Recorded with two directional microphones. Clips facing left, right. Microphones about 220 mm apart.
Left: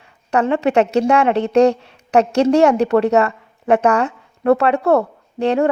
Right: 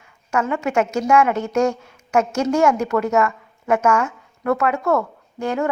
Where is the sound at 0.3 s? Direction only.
35° left (ahead or behind).